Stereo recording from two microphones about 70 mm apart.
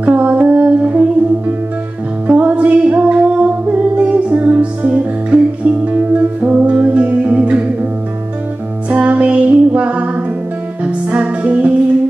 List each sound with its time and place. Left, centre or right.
0.0 s mantra: right
2.2 s music: right
8.9 s music: centre